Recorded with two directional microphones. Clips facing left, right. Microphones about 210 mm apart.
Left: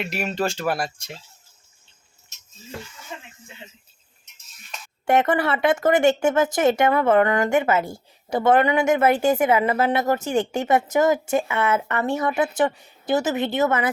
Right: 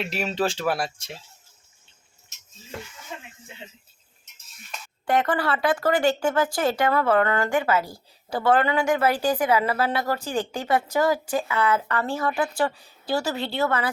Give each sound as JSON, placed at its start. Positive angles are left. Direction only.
{"t": 0.2, "sound": "speech", "side_deg": 0}
{"t": 5.0, "sound": "speech", "side_deg": 25}